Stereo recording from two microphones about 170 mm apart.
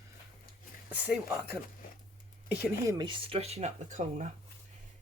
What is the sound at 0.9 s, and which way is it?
Speech, 10° right (ahead or behind).